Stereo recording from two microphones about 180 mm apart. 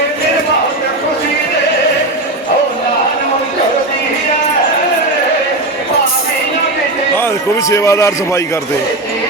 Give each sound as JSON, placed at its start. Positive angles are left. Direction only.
{"t": 7.7, "sound": "a man's voice", "side_deg": 15}